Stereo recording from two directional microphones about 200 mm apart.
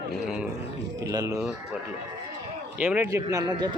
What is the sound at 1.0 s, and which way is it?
Speech, 15° right (ahead or behind).